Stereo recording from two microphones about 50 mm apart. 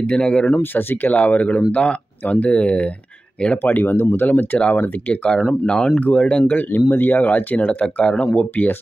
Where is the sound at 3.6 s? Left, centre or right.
Left.